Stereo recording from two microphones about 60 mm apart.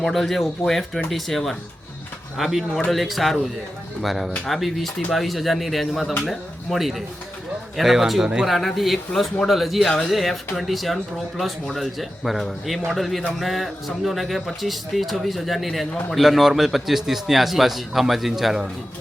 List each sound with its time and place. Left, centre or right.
0.0 s a man's voice: centre